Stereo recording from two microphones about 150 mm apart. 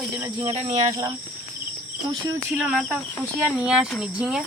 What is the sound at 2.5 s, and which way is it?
Speech, 5° right (ahead or behind).